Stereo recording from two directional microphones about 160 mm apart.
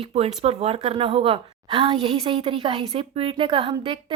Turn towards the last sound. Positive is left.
turn(degrees=-25)  # may be behind; listen again after turning